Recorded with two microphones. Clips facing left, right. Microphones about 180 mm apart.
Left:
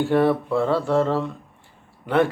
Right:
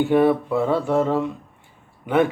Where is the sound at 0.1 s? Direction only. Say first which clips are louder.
Right 2 dB; 10° right (ahead or behind).